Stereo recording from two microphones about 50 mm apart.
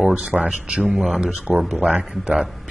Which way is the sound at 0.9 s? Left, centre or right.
Centre.